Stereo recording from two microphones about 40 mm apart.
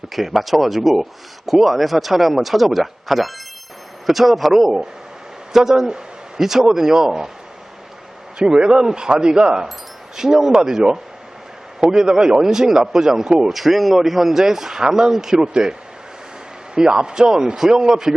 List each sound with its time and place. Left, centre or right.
0.1 s a man's voice: centre
8.4 s a man's voice: centre
13.5 s a man's voice: centre
16.7 s a man's voice: centre